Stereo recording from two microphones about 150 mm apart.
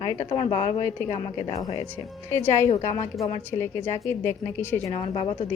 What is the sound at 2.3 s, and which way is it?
Speech, 15° left (ahead or behind).